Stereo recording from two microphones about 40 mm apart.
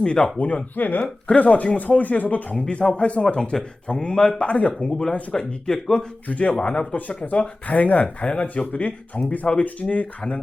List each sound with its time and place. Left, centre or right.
0.0 s speech: left
3.9 s speech: centre
4.4 s speech: left
4.8 s speech: left
6.2 s speech: left
7.3 s speech: left
8.2 s speech: left
8.5 s speech: left
9.5 s speech: left
9.9 s speech: left